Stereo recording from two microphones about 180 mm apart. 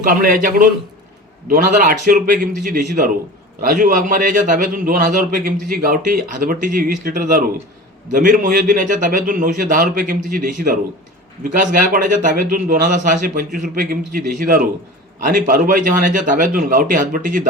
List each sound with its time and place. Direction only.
0.0 s a man's voice: 50° right (ahead or behind)